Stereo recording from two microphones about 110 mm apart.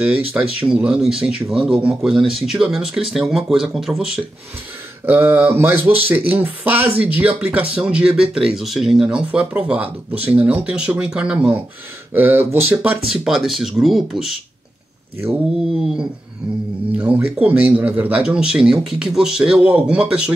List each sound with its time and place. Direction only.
0.0 s speech: 15° right (ahead or behind)
5.0 s speech: 20° right (ahead or behind)
13.1 s speech: 5° right (ahead or behind)
16.9 s speech: 10° right (ahead or behind)